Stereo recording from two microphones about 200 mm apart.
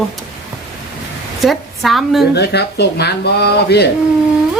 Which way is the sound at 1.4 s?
Centre (ahead or behind).